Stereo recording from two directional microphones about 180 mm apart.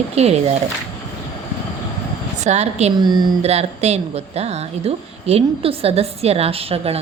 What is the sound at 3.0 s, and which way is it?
Speech, 25° right (ahead or behind).